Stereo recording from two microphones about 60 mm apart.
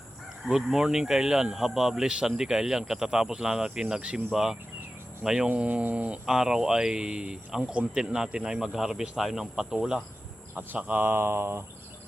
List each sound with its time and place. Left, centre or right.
0.4 s speech: centre
5.5 s speech: right
6.2 s speech: centre
10.8 s speech: right
11.0 s a sound: right